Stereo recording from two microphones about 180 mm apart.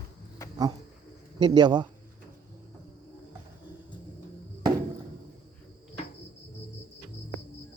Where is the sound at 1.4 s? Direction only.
25° right (ahead or behind).